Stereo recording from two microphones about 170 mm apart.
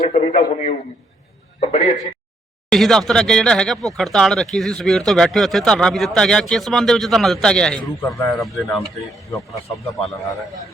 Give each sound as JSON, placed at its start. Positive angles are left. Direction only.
{"t": 0.1, "sound": "a man's voice", "side_deg": 40}
{"t": 2.6, "sound": "speech", "side_deg": 0}